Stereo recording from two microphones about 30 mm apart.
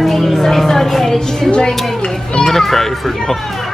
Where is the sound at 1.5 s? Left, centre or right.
Left.